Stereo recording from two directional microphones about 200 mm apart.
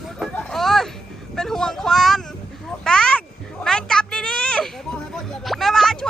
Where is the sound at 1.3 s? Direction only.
Centre (ahead or behind).